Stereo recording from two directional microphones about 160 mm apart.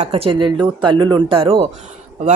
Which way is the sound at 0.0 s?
35° right (ahead or behind).